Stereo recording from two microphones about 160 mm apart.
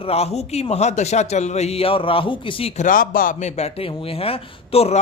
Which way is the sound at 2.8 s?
60° left (ahead or behind).